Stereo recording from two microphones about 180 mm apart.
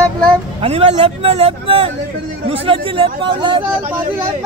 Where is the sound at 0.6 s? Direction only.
35° right (ahead or behind).